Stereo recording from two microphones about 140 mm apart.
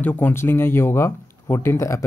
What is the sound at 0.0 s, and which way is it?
Speech, 15° left (ahead or behind).